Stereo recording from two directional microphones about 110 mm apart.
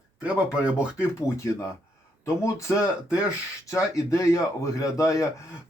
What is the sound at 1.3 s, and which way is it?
Speech, 25° left (ahead or behind).